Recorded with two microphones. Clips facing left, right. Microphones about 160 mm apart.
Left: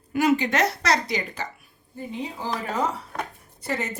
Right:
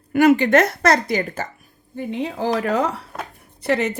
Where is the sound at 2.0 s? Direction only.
70° right (ahead or behind).